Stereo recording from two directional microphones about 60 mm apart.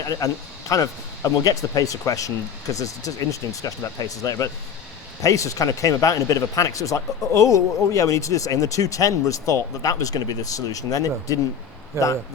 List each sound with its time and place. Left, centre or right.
0.0 s speech: left
0.7 s speech: left